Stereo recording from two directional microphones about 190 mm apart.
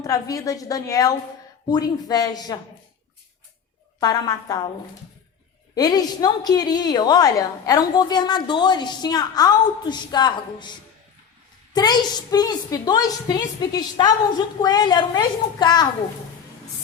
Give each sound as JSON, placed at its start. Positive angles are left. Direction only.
{"t": 0.0, "sound": "a woman's voice", "side_deg": 20}
{"t": 4.0, "sound": "a woman's voice", "side_deg": 20}
{"t": 5.7, "sound": "a woman's voice", "side_deg": 20}